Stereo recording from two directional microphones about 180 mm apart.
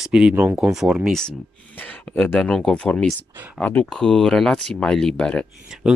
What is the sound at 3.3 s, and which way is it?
Speech, 10° right (ahead or behind).